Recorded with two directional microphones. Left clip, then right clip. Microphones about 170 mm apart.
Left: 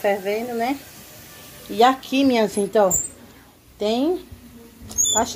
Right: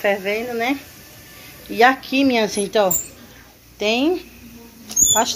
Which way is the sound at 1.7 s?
15° left (ahead or behind).